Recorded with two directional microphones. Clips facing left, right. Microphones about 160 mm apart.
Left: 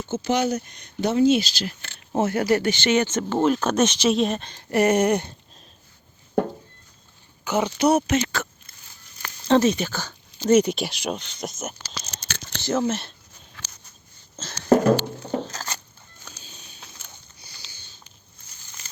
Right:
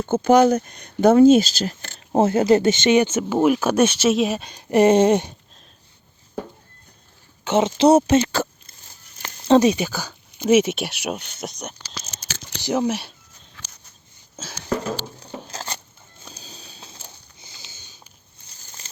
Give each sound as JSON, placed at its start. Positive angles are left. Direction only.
{"t": 0.0, "sound": "speech", "side_deg": -55}
{"t": 2.2, "sound": "speech", "side_deg": -25}
{"t": 6.3, "sound": "music", "side_deg": 65}
{"t": 7.4, "sound": "speech", "side_deg": -25}
{"t": 9.2, "sound": "a sound", "side_deg": -15}
{"t": 10.6, "sound": "speech", "side_deg": 0}
{"t": 12.6, "sound": "speech", "side_deg": -15}
{"t": 14.4, "sound": "speech", "side_deg": -10}
{"t": 14.8, "sound": "patter", "side_deg": 65}
{"t": 15.4, "sound": "a sound", "side_deg": -25}